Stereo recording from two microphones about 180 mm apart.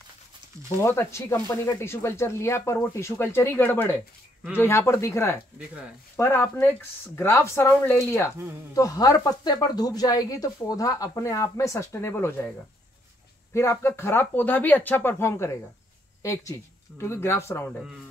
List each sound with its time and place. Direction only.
0.8 s speech: 15° left (ahead or behind)